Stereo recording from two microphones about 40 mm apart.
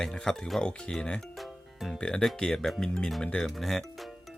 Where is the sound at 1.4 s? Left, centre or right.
Centre.